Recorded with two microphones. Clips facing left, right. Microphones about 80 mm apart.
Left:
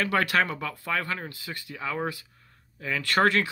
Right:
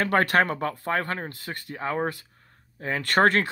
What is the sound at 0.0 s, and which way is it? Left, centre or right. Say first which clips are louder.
Speech: right 3 dB; right.